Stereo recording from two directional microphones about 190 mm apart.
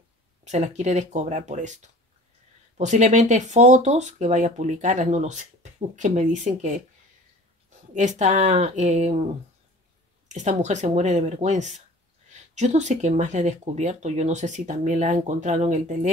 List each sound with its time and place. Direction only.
0.5 s speech: 35° right (ahead or behind)
7.9 s speech: 40° right (ahead or behind)